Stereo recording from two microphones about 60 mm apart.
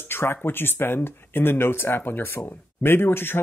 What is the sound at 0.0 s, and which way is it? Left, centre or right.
Speech, left.